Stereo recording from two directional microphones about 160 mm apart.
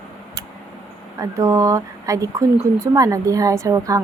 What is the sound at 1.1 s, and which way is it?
A woman's voice, 20° right (ahead or behind).